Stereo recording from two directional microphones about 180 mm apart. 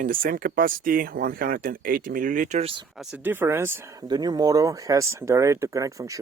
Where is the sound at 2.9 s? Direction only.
10° right (ahead or behind).